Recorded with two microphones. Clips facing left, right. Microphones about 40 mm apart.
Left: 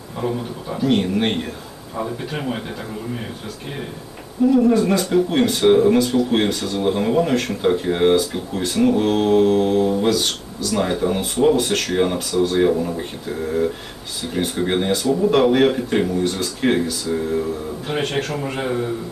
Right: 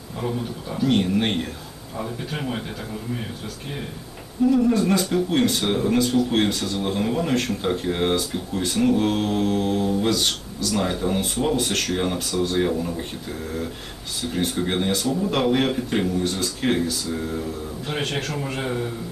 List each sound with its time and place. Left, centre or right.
0.2 s speech: centre
4.7 s speech: centre
14.3 s speech: centre